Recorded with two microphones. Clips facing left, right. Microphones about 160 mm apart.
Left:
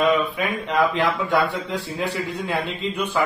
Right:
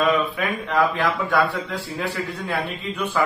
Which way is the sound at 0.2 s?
20° left (ahead or behind).